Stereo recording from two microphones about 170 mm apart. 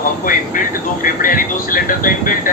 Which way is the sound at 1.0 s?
55° left (ahead or behind).